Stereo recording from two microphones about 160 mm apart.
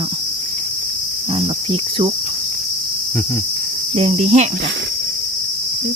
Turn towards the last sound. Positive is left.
turn(degrees=-45)  # may be behind; listen again after turning